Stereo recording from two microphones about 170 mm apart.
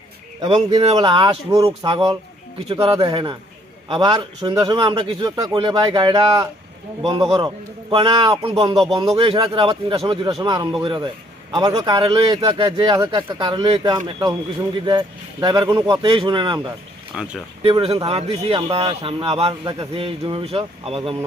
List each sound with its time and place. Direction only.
0.4 s a man's voice: 30° right (ahead or behind)
17.1 s speech: 5° right (ahead or behind)
17.6 s speech: 35° right (ahead or behind)